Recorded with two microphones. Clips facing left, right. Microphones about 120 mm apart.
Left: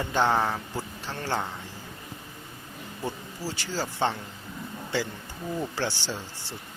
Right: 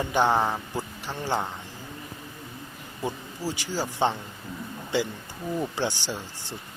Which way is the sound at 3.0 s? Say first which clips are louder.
Right 3 dB; 15° right (ahead or behind).